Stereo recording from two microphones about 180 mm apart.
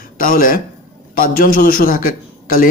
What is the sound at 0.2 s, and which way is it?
Speech, 50° left (ahead or behind).